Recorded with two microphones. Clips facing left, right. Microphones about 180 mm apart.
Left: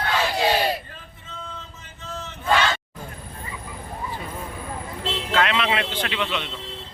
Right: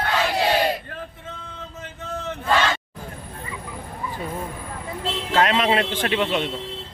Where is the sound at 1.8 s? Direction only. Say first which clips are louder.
Right 6 dB; 55° right (ahead or behind).